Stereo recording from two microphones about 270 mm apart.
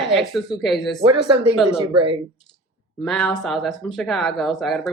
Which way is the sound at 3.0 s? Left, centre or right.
Centre.